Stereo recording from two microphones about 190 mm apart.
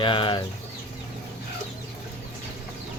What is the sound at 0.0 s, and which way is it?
Speech, 25° left (ahead or behind).